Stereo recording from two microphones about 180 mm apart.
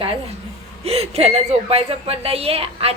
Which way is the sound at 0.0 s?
30° right (ahead or behind).